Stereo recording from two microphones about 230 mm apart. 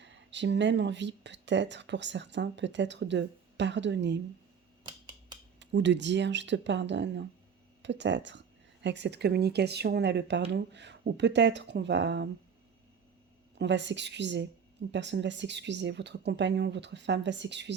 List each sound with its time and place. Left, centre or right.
0.0 s speech: right
4.8 s a sound: centre
5.5 s speech: right
13.6 s speech: right